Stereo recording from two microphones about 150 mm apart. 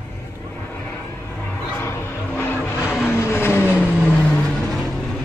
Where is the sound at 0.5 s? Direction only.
10° left (ahead or behind).